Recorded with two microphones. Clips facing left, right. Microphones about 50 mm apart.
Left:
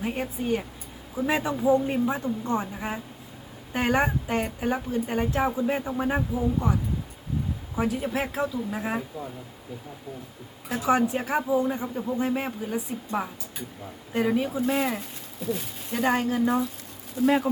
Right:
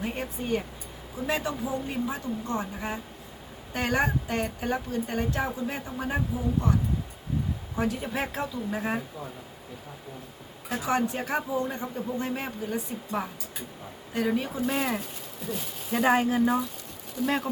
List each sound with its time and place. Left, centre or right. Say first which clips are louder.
0.0 s a woman's voice: left 3 dB; centre
1.6 s speech: left 8 dB; left
3.7 s speech: left 2 dB; centre
7.8 s a woman's voice: left 2 dB; centre
10.7 s speech: left 4 dB; centre
14.3 s a woman's voice: left 3 dB; centre
15.9 s speech: right 1 dB; centre
17.2 s a woman's voice: left 6 dB; centre